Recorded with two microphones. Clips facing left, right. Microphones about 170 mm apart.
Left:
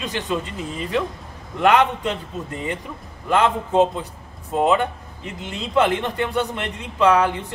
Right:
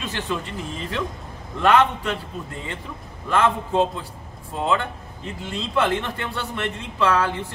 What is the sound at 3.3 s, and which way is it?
A man's voice, 20° left (ahead or behind).